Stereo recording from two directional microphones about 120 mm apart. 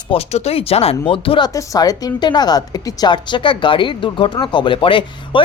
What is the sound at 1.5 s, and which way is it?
A woman's voice, 30° left (ahead or behind).